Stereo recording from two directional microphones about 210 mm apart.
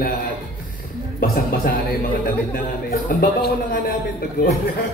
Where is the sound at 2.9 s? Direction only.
45° left (ahead or behind).